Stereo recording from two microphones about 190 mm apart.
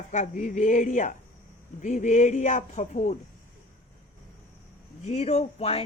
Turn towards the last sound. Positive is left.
turn(degrees=30)  # may be behind; listen again after turning